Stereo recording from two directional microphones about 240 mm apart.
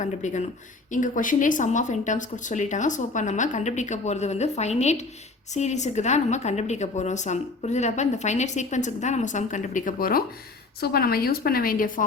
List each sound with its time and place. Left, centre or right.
0.0 s a woman's voice: left